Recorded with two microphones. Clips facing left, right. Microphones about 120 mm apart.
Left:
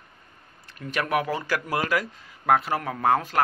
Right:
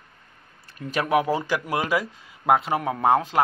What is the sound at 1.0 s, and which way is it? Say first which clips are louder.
Speech: right 4 dB; 20° right (ahead or behind).